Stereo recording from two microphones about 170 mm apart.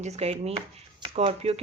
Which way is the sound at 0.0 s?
40° right (ahead or behind).